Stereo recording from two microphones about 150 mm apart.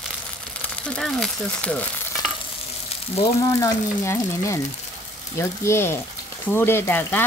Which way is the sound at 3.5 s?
20° left (ahead or behind).